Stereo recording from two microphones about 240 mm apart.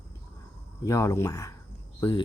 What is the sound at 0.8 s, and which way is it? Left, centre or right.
Speech, centre.